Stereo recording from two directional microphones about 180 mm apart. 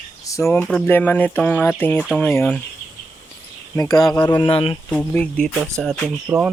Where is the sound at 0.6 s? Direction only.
Centre (ahead or behind).